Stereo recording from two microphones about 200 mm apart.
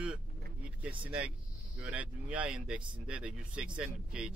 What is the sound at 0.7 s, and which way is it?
Speech, 5° right (ahead or behind).